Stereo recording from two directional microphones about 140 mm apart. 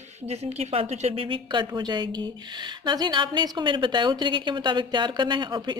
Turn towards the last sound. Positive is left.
turn(degrees=-35)  # may be behind; listen again after turning